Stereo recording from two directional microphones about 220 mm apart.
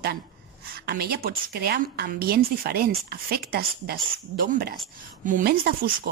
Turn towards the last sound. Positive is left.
turn(degrees=-40)  # may be behind; listen again after turning